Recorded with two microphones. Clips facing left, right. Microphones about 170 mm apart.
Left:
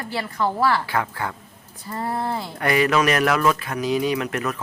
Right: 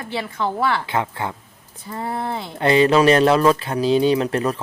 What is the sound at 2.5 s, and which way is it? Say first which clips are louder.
Speech: right 5 dB; 25° right (ahead or behind).